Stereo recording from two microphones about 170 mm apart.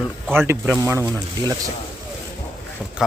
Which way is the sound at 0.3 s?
15° right (ahead or behind).